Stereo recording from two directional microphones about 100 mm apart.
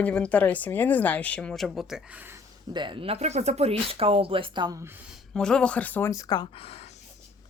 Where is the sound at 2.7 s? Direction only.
50° right (ahead or behind).